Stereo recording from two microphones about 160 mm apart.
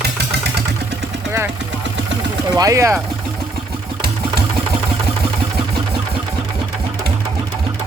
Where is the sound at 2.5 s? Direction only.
20° right (ahead or behind).